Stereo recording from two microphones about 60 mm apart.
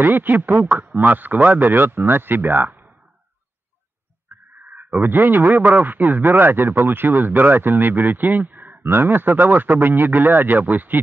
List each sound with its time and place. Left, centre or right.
0.0 s speech: right
4.3 s a sound: right
4.6 s speech: right